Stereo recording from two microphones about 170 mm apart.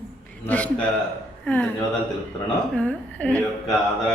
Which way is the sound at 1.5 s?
10° left (ahead or behind).